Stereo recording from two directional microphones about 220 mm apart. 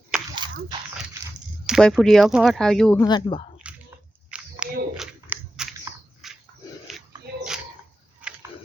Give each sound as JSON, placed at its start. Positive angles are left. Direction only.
{"t": 0.1, "sound": "biting", "side_deg": -5}
{"t": 1.6, "sound": "speech", "side_deg": 0}
{"t": 3.0, "sound": "speech", "side_deg": 20}
{"t": 3.6, "sound": "biting", "side_deg": -5}
{"t": 4.6, "sound": "a sound", "side_deg": -5}
{"t": 8.2, "sound": "a sound", "side_deg": -5}